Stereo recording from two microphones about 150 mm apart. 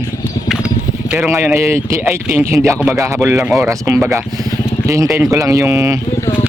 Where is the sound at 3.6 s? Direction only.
20° right (ahead or behind).